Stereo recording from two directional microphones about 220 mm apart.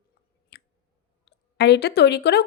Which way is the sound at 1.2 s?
50° left (ahead or behind).